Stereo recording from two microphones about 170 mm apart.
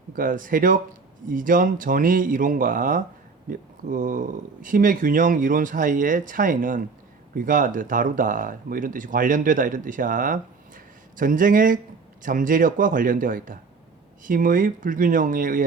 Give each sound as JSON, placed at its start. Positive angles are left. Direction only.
{"t": 0.1, "sound": "speech", "side_deg": -50}